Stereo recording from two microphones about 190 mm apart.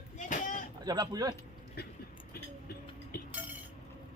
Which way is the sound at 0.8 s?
20° right (ahead or behind).